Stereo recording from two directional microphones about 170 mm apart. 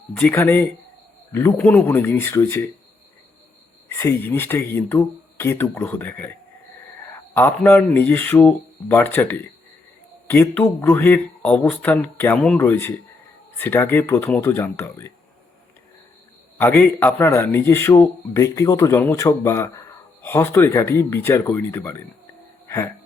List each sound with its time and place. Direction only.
0.2 s a man's voice: 10° left (ahead or behind)
3.9 s a man's voice: 15° left (ahead or behind)
16.6 s a man's voice: 10° left (ahead or behind)
22.6 s a sound: 15° left (ahead or behind)